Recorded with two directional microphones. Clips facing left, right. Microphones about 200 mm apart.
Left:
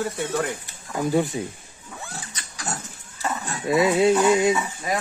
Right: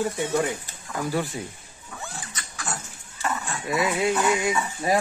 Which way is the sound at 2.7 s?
40° left (ahead or behind).